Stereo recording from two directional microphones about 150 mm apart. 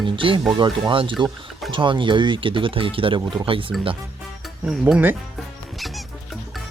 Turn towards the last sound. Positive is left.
turn(degrees=-10)  # may be behind; listen again after turning